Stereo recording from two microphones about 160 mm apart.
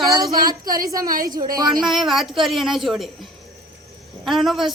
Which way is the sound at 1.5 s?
25° right (ahead or behind).